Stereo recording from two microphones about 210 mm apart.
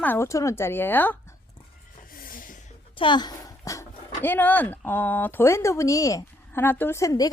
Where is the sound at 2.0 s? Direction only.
45° left (ahead or behind).